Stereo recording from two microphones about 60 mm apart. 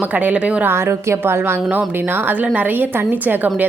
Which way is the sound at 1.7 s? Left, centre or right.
Right.